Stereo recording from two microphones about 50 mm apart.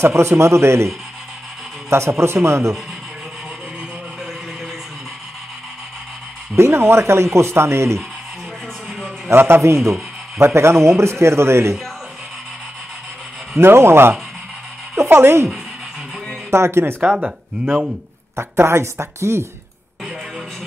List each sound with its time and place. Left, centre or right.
0.0 s speech: right
6.5 s speech: right
9.3 s speech: right
9.6 s speech: right
13.6 s speech: right
16.4 s speech: right
17.2 s speech: right
18.3 s speech: right